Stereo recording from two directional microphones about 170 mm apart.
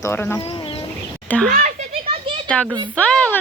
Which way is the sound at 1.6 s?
35° right (ahead or behind).